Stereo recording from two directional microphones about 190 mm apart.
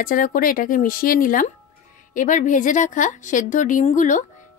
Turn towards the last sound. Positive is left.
turn(degrees=40)  # may be behind; listen again after turning